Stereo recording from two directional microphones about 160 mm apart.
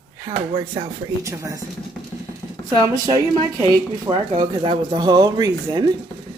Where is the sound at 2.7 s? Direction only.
20° right (ahead or behind).